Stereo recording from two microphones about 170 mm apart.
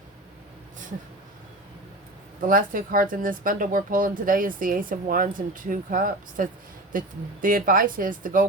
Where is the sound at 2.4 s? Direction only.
55° right (ahead or behind).